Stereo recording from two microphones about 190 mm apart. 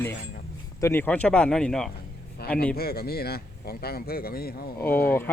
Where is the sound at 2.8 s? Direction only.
55° left (ahead or behind).